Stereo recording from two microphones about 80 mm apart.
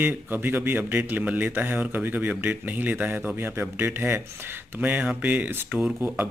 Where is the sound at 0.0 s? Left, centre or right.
Right.